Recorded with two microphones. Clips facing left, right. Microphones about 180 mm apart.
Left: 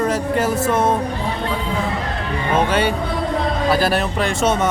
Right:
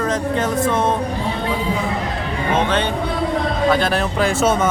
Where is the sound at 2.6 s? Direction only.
10° left (ahead or behind).